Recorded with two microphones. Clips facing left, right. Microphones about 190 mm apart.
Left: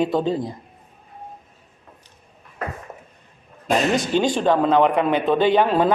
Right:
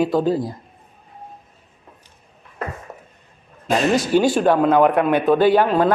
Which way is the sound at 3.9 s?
5° right (ahead or behind).